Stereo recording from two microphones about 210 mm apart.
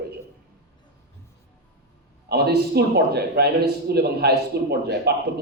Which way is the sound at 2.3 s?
50° right (ahead or behind).